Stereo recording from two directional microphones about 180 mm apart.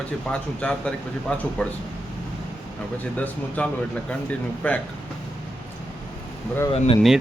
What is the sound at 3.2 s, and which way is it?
Speech, 5° left (ahead or behind).